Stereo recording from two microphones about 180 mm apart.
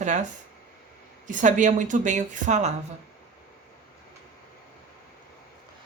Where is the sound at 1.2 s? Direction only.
45° right (ahead or behind).